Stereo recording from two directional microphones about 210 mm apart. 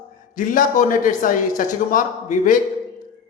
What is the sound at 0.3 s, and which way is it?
Speech, 40° left (ahead or behind).